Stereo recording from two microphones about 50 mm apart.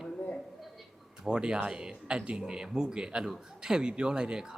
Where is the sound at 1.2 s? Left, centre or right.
Centre.